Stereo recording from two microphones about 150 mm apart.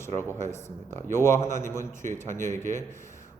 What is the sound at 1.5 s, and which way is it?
Speech, 60° right (ahead or behind).